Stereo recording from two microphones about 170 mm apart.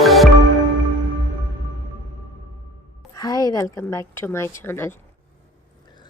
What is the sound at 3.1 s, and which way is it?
A woman's voice, 20° left (ahead or behind).